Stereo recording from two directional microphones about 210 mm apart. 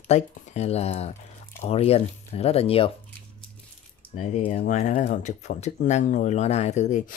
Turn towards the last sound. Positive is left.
turn(degrees=35)  # may be behind; listen again after turning